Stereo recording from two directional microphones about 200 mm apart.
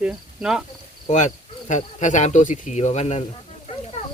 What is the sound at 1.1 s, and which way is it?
Speech, 35° left (ahead or behind).